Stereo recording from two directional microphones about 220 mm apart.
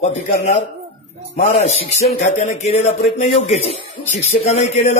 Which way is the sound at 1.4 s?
30° left (ahead or behind).